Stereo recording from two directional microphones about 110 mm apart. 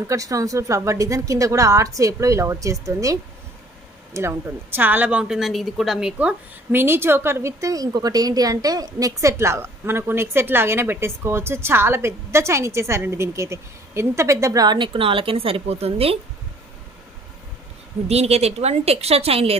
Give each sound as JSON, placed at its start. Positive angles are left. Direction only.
{"t": 0.1, "sound": "a woman's voice", "side_deg": -30}
{"t": 18.0, "sound": "a woman's voice", "side_deg": -70}